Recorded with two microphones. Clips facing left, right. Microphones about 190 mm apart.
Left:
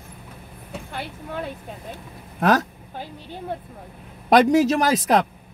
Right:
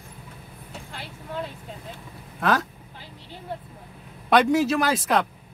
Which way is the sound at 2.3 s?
45° left (ahead or behind).